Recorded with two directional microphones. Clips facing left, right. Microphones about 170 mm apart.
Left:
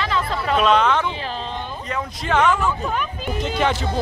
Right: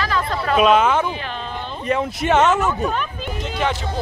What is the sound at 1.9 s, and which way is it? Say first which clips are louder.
Speech: right 6 dB; 25° right (ahead or behind).